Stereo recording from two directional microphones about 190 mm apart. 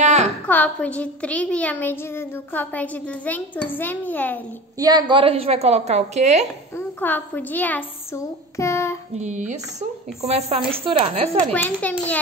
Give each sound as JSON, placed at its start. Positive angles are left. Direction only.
{"t": 0.0, "sound": "a sound", "side_deg": -35}
{"t": 0.5, "sound": "a woman's voice", "side_deg": 5}
{"t": 4.7, "sound": "speech", "side_deg": -20}
{"t": 6.8, "sound": "a child's voice", "side_deg": 10}
{"t": 9.2, "sound": "speech", "side_deg": -40}
{"t": 11.5, "sound": "a woman's voice", "side_deg": 10}